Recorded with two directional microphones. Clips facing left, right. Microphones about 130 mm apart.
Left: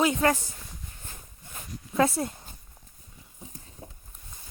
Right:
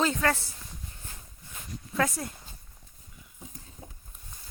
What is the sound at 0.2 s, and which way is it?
Speech, 15° left (ahead or behind).